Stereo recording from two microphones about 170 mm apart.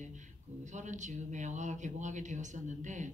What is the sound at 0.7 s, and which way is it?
A man's voice, 45° right (ahead or behind).